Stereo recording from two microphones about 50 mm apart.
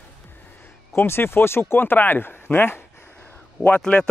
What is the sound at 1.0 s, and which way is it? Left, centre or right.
Speech, left.